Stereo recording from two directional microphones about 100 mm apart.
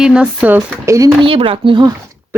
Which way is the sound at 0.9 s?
30° right (ahead or behind).